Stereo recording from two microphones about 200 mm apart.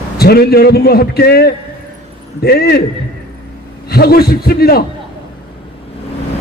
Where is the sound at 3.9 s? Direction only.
50° left (ahead or behind).